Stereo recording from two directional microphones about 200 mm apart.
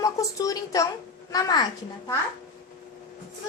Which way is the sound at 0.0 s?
15° left (ahead or behind).